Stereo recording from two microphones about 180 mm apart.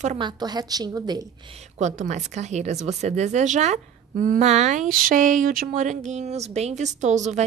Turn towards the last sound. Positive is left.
turn(degrees=-40)  # may be behind; listen again after turning